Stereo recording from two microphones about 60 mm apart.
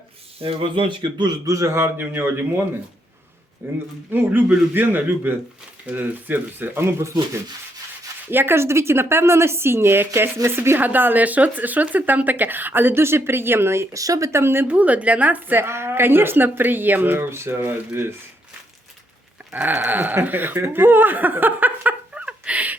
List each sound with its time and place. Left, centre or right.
1.5 s a man's voice: right
1.7 s speech: right
3.6 s speech: right
8.3 s a woman's voice: right
10.8 s speech: right
13.9 s speech: right
14.3 s a woman's voice: right
14.7 s speech: right
15.6 s speech: right
19.5 s speech: right
22.1 s a sound: centre